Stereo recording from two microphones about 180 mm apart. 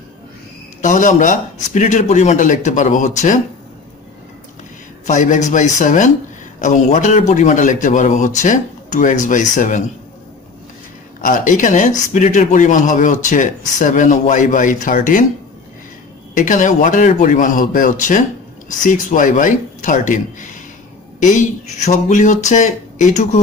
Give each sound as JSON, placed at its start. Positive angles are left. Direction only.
{"t": 0.8, "sound": "speech", "side_deg": 45}
{"t": 5.0, "sound": "speech", "side_deg": 45}
{"t": 11.1, "sound": "speech", "side_deg": 45}
{"t": 16.3, "sound": "speech", "side_deg": 45}